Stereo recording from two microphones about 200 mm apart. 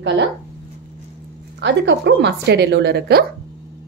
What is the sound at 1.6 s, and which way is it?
A woman's voice, 60° right (ahead or behind).